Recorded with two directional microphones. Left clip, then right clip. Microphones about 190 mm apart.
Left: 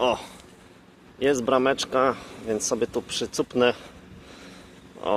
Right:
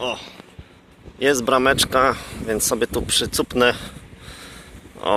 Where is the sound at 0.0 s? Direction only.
35° left (ahead or behind).